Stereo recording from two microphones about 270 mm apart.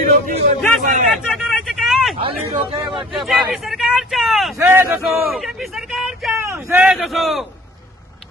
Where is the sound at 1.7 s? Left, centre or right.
Centre.